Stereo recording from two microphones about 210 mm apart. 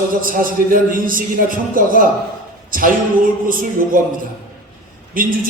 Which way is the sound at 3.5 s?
40° right (ahead or behind).